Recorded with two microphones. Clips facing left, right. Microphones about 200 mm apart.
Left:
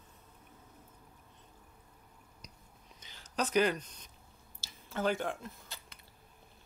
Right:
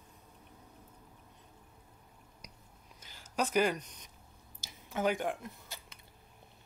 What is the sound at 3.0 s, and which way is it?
Speech, 10° right (ahead or behind).